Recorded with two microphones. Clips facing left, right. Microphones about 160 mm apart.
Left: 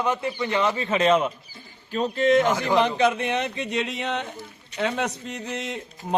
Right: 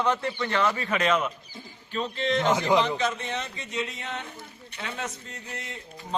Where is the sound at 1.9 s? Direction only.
45° left (ahead or behind).